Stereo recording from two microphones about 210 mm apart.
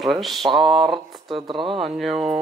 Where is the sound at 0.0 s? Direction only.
Centre (ahead or behind).